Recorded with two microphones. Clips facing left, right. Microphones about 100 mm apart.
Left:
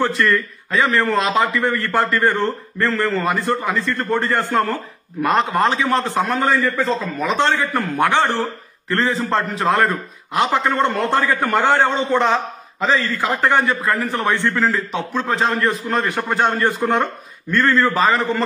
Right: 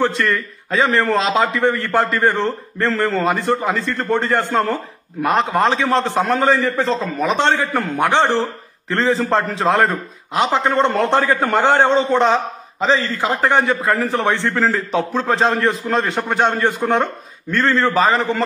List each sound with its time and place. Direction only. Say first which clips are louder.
0.7 s a man's voice: right 1 dB; 30° right (ahead or behind)
9.3 s a man's voice: right 2 dB; 30° right (ahead or behind)
16.2 s a man's voice: right 1 dB; 20° right (ahead or behind)